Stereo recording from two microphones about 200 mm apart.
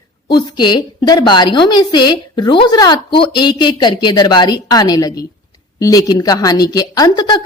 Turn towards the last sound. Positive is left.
turn(degrees=20)  # may be behind; listen again after turning